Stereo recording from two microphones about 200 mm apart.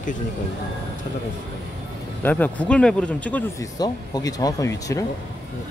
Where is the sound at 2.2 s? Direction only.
10° left (ahead or behind).